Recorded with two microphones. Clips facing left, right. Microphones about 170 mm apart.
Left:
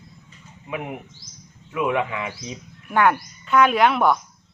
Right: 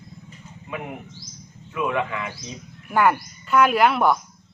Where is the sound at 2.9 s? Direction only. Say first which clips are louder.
Even; 5° right (ahead or behind).